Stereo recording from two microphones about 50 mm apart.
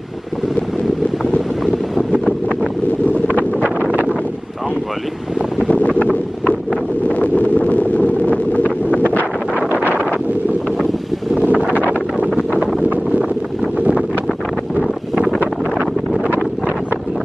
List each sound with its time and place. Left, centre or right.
1.6 s wind noise: centre
3.3 s wind noise: left
5.7 s wind noise: left
8.6 s wind noise: right
9.7 s wind noise: left
11.4 s wind noise: right
13.8 s wind noise: right